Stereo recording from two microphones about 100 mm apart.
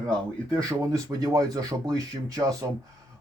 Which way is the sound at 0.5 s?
35° right (ahead or behind).